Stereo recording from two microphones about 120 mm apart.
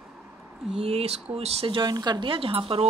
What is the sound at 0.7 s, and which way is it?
Speech, 55° right (ahead or behind).